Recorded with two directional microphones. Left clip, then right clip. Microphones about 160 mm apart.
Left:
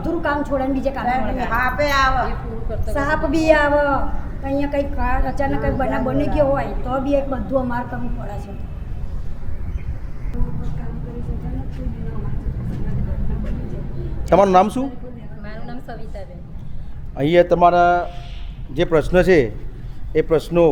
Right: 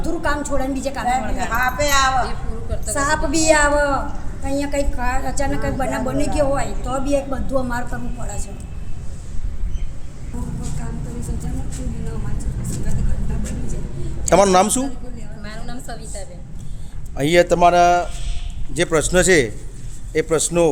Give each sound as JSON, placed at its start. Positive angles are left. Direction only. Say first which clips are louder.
{"t": 0.0, "sound": "a woman's voice", "louder": "left 1 dB", "side_deg": -10}
{"t": 1.5, "sound": "speech", "louder": "even", "side_deg": 15}
{"t": 2.2, "sound": "a woman's voice", "louder": "left 2 dB", "side_deg": -25}
{"t": 2.9, "sound": "a woman's voice", "louder": "even", "side_deg": -10}
{"t": 14.3, "sound": "a woman's voice", "louder": "even", "side_deg": -5}
{"t": 15.4, "sound": "a sound", "louder": "right 1 dB", "side_deg": -5}
{"t": 17.2, "sound": "a woman's voice", "louder": "even", "side_deg": -5}